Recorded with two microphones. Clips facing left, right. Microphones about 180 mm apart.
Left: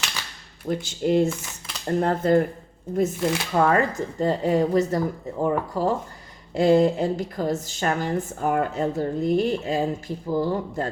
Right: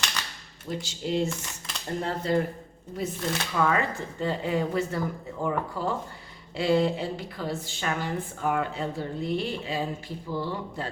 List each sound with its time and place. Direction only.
0.7 s a woman's voice: 55° left (ahead or behind)